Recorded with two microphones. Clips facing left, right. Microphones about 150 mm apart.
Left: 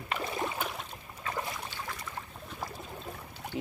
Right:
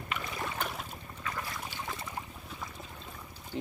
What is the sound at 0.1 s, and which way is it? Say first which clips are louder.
Boat: left 4 dB; 30° left (ahead or behind).